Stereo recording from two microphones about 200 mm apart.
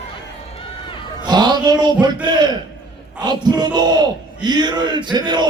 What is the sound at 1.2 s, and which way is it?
Music, 20° right (ahead or behind).